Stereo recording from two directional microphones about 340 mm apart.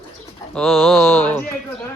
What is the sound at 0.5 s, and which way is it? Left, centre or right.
Speech, centre.